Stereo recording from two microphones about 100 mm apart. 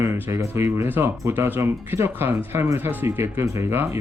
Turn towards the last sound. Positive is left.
turn(degrees=-25)  # may be behind; listen again after turning